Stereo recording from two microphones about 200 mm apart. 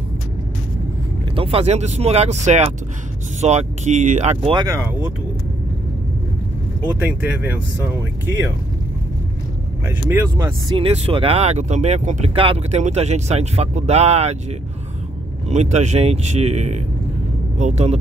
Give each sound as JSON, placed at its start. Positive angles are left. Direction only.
{"t": 1.3, "sound": "speech", "side_deg": -25}
{"t": 9.8, "sound": "speech", "side_deg": -10}
{"t": 10.8, "sound": "speech", "side_deg": -30}
{"t": 15.5, "sound": "speech", "side_deg": -35}